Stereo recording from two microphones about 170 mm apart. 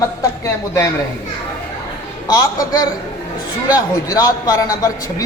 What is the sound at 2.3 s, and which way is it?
Speech, 20° left (ahead or behind).